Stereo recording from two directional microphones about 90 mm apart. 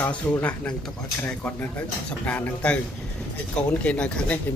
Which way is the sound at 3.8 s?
10° left (ahead or behind).